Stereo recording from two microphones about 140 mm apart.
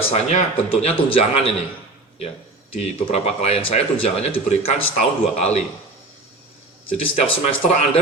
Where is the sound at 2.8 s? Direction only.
50° left (ahead or behind).